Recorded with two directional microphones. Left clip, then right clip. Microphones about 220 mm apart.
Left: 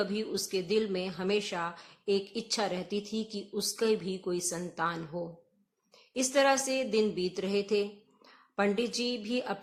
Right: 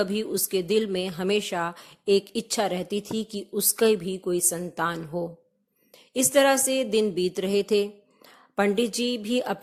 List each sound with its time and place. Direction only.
0.0 s speech: 35° right (ahead or behind)